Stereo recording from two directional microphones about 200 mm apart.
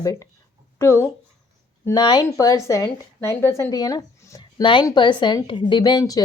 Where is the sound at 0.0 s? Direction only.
15° left (ahead or behind).